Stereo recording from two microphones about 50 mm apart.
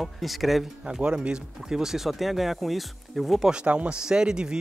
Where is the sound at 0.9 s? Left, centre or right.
Centre.